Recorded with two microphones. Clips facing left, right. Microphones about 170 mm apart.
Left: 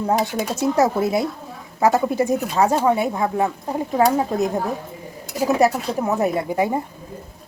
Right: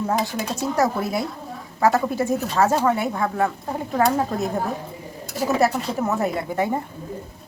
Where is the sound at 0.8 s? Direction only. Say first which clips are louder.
Left 3 dB; 20° left (ahead or behind).